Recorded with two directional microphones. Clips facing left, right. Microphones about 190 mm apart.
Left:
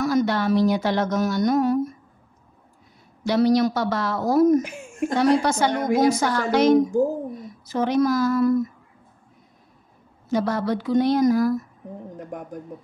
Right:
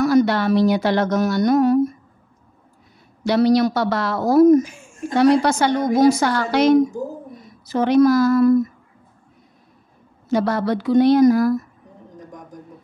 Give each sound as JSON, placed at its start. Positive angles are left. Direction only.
{"t": 0.0, "sound": "a woman's voice", "side_deg": -70}
{"t": 3.3, "sound": "a woman's voice", "side_deg": -75}
{"t": 10.3, "sound": "a woman's voice", "side_deg": -75}
{"t": 12.2, "sound": "a sound", "side_deg": 60}